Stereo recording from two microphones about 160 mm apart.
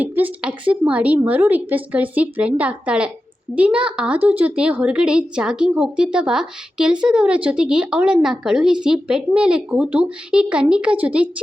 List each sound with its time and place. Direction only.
0.0 s a woman's voice: 10° right (ahead or behind)